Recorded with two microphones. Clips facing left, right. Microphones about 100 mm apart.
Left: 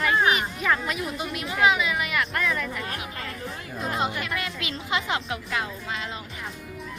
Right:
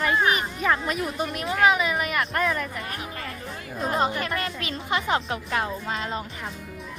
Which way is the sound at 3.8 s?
40° right (ahead or behind).